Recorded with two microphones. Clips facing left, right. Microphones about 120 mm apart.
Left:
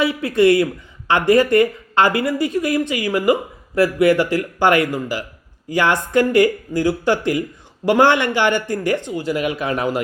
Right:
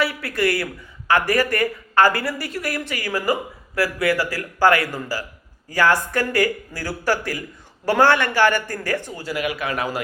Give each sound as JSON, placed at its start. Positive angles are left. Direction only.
{"t": 0.0, "sound": "speech", "side_deg": 20}